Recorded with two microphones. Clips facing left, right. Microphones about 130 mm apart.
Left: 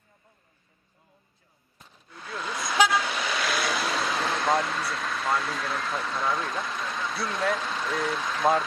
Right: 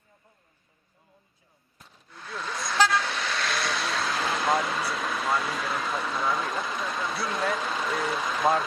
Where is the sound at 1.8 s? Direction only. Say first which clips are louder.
Left 1 dB; centre (ahead or behind).